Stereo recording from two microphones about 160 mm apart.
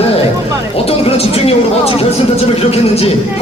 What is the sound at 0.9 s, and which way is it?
Speech, 40° left (ahead or behind).